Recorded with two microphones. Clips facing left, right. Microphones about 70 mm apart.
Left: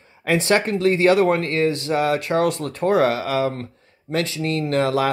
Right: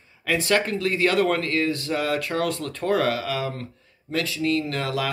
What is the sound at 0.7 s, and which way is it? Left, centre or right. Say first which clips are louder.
Speech: left 6 dB; left.